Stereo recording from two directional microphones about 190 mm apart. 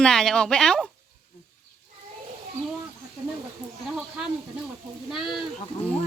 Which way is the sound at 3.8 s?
5° right (ahead or behind).